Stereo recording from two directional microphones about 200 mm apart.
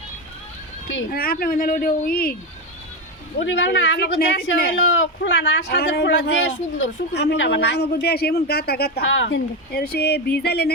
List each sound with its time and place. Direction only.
1.1 s speech: 50° left (ahead or behind)
3.4 s a woman's voice: 65° left (ahead or behind); by 4.8 s 50° left (ahead or behind)
4.9 s a woman's voice: 70° left (ahead or behind); by 10.7 s 55° left (ahead or behind)